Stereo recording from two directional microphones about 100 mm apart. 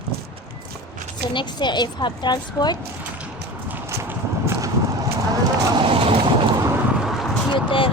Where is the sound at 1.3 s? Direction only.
50° left (ahead or behind).